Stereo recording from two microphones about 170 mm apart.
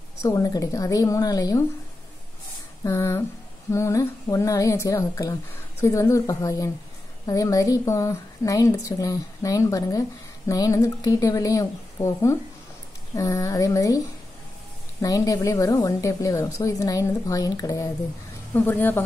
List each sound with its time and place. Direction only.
0.2 s a woman's voice: 20° left (ahead or behind)
2.8 s a woman's voice: 15° left (ahead or behind)